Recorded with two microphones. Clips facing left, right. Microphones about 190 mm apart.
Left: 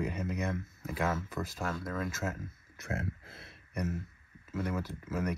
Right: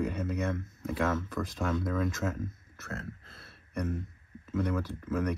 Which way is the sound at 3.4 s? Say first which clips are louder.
Right 2 dB; 10° left (ahead or behind).